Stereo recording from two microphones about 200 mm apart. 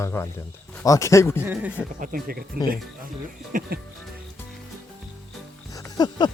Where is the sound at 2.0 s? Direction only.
45° right (ahead or behind).